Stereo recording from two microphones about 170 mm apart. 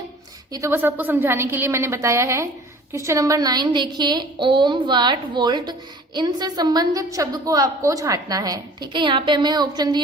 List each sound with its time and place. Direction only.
0.5 s a woman's voice: 15° right (ahead or behind)